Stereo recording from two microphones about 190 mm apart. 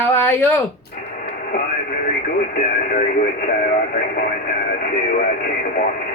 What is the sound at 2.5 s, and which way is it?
Radio, 45° left (ahead or behind).